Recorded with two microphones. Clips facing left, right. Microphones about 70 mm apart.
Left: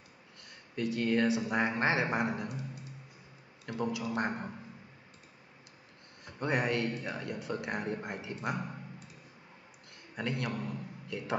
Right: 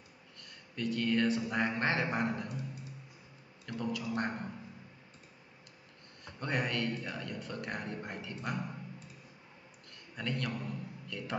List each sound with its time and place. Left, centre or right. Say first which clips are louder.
0.4 s a man's voice: left 3 dB; centre
3.6 s a man's voice: left 3 dB; centre
6.4 s a man's voice: left 3 dB; centre
10.1 s a man's voice: left 2 dB; centre